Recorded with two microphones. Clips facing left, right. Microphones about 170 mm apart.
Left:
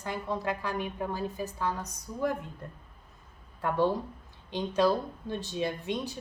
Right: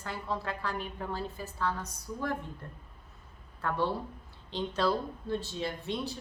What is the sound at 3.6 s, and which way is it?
A woman's voice, 15° left (ahead or behind).